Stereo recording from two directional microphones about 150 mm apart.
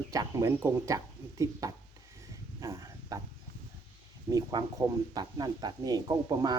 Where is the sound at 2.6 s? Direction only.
20° right (ahead or behind).